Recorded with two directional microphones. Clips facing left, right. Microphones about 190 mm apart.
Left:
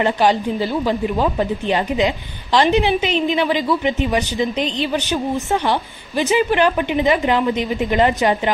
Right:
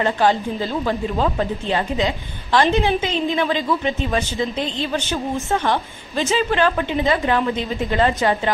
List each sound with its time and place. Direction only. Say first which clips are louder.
0.0 s a woman's voice: left 2 dB; 15° left (ahead or behind)